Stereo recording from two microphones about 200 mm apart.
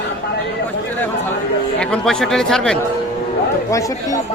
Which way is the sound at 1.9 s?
5° left (ahead or behind).